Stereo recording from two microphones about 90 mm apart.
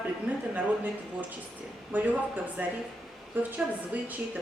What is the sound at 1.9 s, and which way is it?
Speech, 20° right (ahead or behind).